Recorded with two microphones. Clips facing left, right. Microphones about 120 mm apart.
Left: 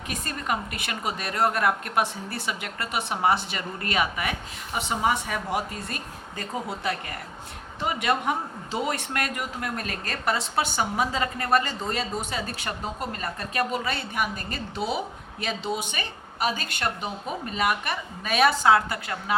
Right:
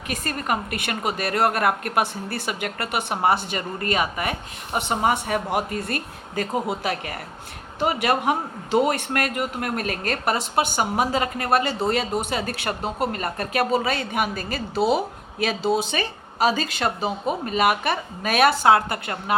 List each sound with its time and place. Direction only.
0.1 s speech: 65° right (ahead or behind)
13.7 s a woman's voice: 90° right; by 19.4 s 55° right (ahead or behind)